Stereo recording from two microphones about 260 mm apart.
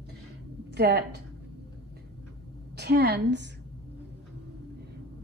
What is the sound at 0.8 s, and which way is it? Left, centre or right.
Speech, right.